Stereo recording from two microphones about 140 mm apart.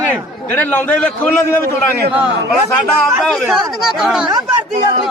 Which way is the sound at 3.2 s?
Centre (ahead or behind).